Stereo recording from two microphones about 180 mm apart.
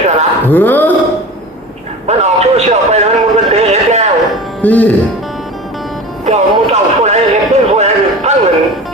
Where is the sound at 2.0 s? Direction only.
40° right (ahead or behind).